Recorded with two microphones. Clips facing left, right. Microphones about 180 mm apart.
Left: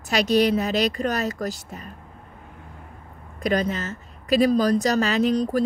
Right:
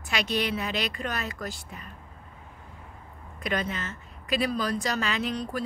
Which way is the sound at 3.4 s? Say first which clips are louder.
Left 7 dB; 40° left (ahead or behind).